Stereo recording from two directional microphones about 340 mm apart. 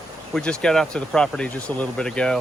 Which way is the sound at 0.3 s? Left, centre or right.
Centre.